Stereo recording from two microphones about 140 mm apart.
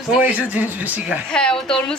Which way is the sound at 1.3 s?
5° left (ahead or behind).